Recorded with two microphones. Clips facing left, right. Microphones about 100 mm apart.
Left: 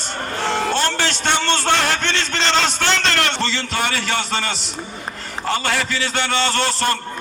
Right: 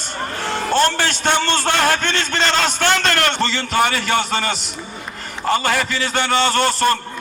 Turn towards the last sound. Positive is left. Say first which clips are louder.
# right 3 dB
turn(degrees=-45)  # may be behind; listen again after turning